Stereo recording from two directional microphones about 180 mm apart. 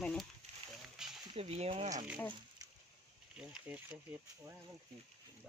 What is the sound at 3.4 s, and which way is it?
Speech, 5° right (ahead or behind).